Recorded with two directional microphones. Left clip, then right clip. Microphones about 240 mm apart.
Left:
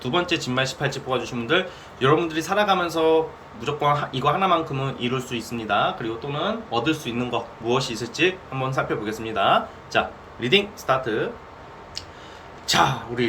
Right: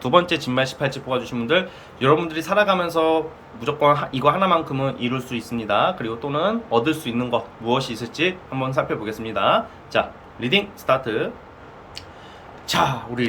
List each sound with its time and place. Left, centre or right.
0.0 s speech: centre
12.6 s speech: centre